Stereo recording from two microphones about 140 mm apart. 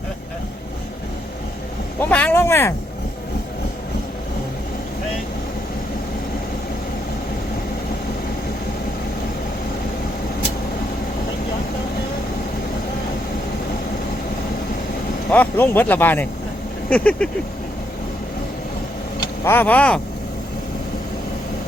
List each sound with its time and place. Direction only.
2.0 s speech: 10° left (ahead or behind)
15.3 s speech: 15° left (ahead or behind)
19.5 s speech: 15° left (ahead or behind)